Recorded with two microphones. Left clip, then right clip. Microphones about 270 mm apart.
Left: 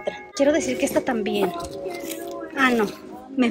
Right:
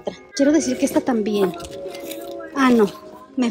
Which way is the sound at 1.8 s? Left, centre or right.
Centre.